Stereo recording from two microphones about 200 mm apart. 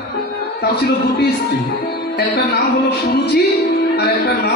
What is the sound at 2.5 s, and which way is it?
Speech, 55° left (ahead or behind).